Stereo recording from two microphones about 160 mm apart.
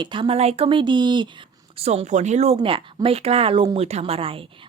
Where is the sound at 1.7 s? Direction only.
40° right (ahead or behind).